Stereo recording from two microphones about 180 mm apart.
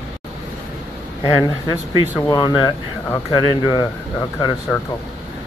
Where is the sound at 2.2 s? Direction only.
25° left (ahead or behind).